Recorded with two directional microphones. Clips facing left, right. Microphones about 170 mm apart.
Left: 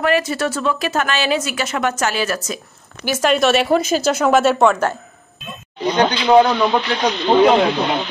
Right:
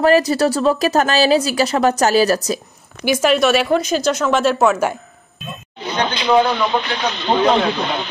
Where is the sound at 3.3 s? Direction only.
Centre (ahead or behind).